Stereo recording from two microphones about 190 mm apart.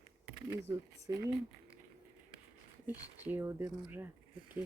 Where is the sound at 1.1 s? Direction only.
15° right (ahead or behind).